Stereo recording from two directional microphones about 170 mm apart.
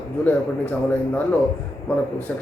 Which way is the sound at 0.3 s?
10° left (ahead or behind).